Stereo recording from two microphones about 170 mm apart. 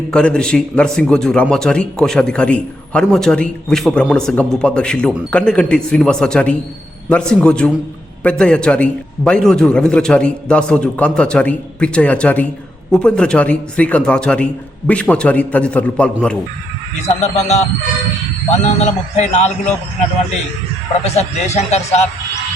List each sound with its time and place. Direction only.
0.1 s a man's voice: 5° left (ahead or behind)
17.2 s speech: 40° left (ahead or behind)
21.0 s speech: 40° left (ahead or behind)